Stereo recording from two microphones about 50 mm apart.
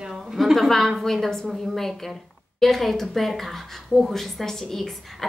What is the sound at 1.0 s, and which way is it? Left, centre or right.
Speech, centre.